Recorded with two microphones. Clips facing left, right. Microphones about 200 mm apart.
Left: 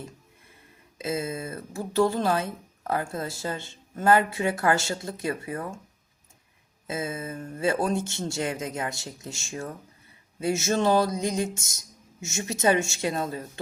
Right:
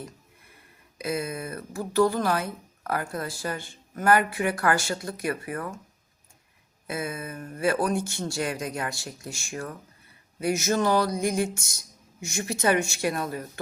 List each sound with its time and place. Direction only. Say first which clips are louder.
0.9 s speech: even; 25° left (ahead or behind)
6.8 s speech: left 1 dB; 20° left (ahead or behind)